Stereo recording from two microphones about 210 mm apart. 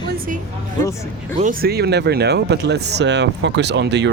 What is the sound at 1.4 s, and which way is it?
Speech, 40° right (ahead or behind).